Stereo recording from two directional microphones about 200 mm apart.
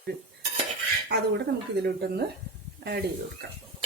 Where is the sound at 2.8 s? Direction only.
55° right (ahead or behind).